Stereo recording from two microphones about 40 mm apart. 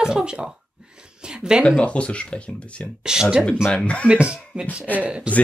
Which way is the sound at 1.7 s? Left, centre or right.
Left.